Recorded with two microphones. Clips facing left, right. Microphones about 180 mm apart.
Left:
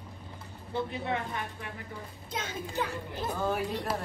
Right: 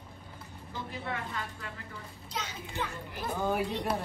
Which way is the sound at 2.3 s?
50° left (ahead or behind).